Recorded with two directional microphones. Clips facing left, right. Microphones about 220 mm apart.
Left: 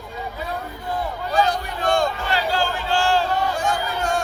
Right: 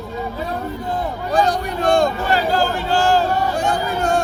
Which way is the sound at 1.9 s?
40° right (ahead or behind).